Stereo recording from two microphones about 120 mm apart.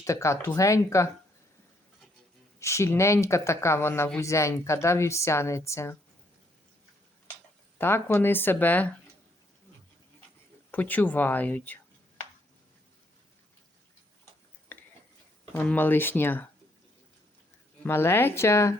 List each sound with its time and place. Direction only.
0.0 s a woman's voice: 25° left (ahead or behind)
2.6 s a woman's voice: 25° left (ahead or behind)
7.8 s speech: 20° left (ahead or behind)
10.7 s speech: 15° left (ahead or behind)
14.7 s a sound: 15° left (ahead or behind)
15.6 s speech: 15° left (ahead or behind)
17.8 s a woman's voice: 20° left (ahead or behind)